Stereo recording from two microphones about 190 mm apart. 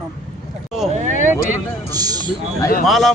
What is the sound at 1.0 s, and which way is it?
Speech, 40° right (ahead or behind).